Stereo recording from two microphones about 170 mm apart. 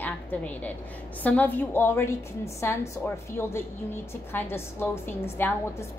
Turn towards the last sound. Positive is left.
turn(degrees=10)  # may be behind; listen again after turning